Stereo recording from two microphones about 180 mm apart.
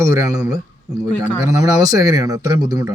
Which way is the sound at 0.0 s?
20° right (ahead or behind).